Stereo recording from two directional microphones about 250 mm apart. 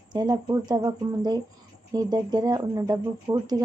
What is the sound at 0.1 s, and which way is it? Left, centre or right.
Speech, centre.